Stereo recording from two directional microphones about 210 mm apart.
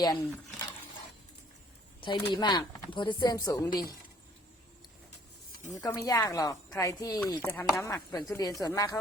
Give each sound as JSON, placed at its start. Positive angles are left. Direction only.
{"t": 0.0, "sound": "speech", "side_deg": 20}
{"t": 2.0, "sound": "speech", "side_deg": 20}
{"t": 5.7, "sound": "speech", "side_deg": 15}